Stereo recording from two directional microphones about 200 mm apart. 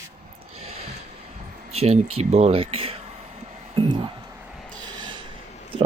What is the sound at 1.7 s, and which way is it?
Speech, 30° right (ahead or behind).